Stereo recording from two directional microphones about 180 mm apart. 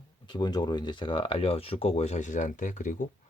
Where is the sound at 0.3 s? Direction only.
25° left (ahead or behind).